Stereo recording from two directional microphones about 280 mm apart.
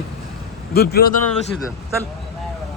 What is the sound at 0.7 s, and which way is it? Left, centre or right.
Speech, left.